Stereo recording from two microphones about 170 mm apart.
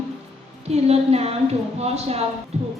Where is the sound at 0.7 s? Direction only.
40° right (ahead or behind).